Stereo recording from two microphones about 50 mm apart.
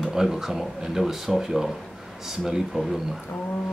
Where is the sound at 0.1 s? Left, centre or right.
Centre.